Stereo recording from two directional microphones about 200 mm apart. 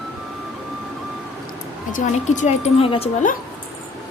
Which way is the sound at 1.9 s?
40° left (ahead or behind).